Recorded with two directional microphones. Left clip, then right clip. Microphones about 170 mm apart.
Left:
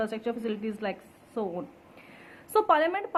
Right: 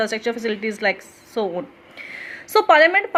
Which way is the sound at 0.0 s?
20° right (ahead or behind).